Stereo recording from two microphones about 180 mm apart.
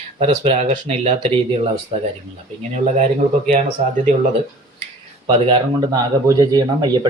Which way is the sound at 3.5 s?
40° right (ahead or behind).